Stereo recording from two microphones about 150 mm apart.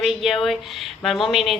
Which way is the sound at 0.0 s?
Centre (ahead or behind).